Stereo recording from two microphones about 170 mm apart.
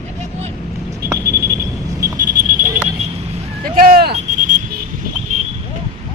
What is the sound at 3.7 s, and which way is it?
Vehicle, 60° right (ahead or behind).